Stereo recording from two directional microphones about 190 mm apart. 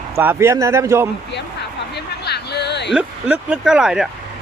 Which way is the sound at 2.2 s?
60° left (ahead or behind).